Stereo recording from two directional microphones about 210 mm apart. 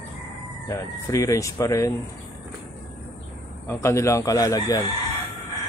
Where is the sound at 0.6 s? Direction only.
15° left (ahead or behind).